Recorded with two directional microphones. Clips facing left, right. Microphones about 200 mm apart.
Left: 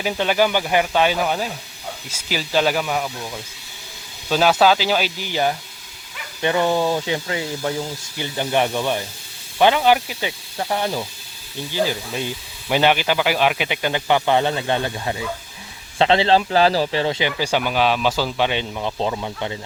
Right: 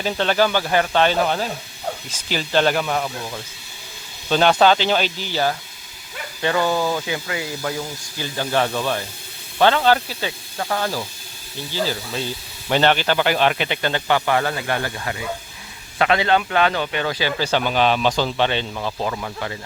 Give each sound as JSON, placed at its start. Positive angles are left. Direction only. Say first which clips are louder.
{"t": 0.0, "sound": "a man's voice", "louder": "even", "side_deg": 10}